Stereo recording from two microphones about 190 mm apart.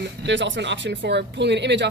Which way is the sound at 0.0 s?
65° right (ahead or behind).